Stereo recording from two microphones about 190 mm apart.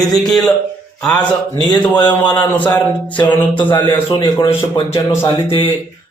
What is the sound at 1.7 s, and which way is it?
Speech, 10° left (ahead or behind).